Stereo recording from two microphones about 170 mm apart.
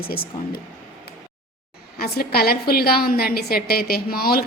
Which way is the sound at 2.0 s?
65° left (ahead or behind).